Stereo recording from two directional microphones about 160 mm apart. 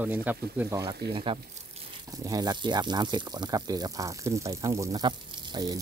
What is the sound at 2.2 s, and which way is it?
Speech, 25° right (ahead or behind).